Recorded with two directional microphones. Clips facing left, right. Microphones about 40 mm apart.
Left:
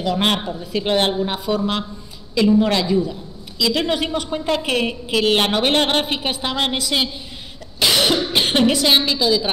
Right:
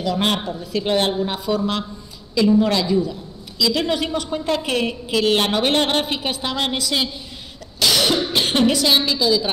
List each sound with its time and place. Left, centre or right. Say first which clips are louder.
0.0 s a woman's voice: left 1 dB; left
7.8 s cough: left 1 dB; left
8.3 s a woman's voice: left 1 dB; left